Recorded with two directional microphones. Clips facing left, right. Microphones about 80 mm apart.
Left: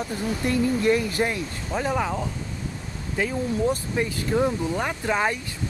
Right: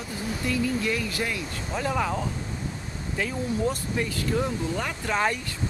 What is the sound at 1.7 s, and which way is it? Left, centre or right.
Speech, centre.